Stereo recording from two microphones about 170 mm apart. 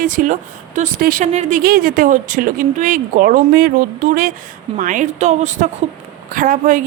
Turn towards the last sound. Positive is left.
turn(degrees=-50)  # may be behind; listen again after turning